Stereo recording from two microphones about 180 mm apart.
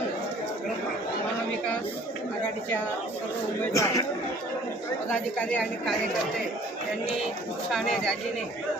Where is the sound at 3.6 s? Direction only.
20° left (ahead or behind).